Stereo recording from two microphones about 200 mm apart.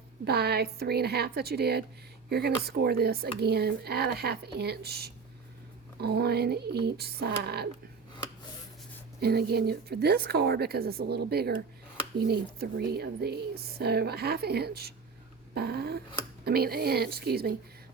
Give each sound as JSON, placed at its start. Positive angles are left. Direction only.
{"t": 0.3, "sound": "speech", "side_deg": -55}
{"t": 9.2, "sound": "speech", "side_deg": -50}